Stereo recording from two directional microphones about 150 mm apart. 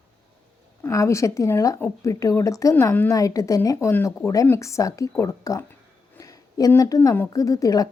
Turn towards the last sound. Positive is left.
turn(degrees=25)  # may be behind; listen again after turning